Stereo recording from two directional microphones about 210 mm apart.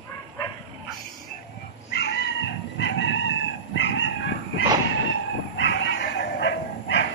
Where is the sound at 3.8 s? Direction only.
60° left (ahead or behind).